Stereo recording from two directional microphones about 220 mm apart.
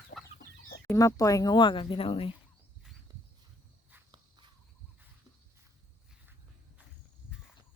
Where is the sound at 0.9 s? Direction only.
15° left (ahead or behind).